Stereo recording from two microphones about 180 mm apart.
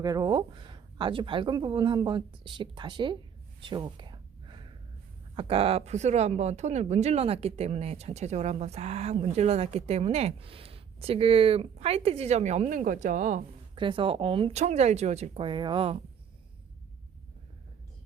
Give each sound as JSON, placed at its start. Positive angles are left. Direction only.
{"t": 0.0, "sound": "speech", "side_deg": -20}
{"t": 3.6, "sound": "a sound", "side_deg": -25}
{"t": 5.3, "sound": "speech", "side_deg": -30}
{"t": 13.7, "sound": "speech", "side_deg": -25}